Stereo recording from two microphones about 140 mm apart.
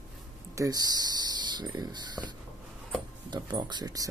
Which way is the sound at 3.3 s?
30° right (ahead or behind).